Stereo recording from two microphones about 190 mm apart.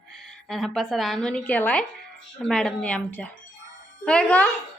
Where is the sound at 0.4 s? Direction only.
Centre (ahead or behind).